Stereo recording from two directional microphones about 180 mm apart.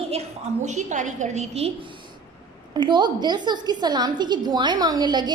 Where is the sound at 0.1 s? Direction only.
40° right (ahead or behind).